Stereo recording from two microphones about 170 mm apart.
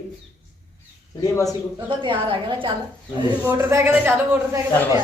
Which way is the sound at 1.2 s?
20° left (ahead or behind).